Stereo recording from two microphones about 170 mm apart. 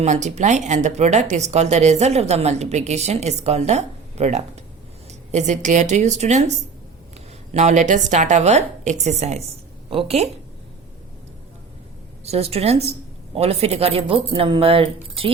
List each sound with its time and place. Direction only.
0.0 s a woman's voice: 45° right (ahead or behind)
7.5 s a woman's voice: 45° right (ahead or behind)
12.2 s speech: 35° right (ahead or behind)